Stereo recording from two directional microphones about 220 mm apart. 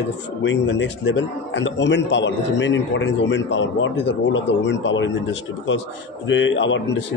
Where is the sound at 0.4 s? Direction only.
55° left (ahead or behind).